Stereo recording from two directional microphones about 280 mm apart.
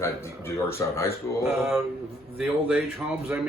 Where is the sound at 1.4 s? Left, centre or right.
Centre.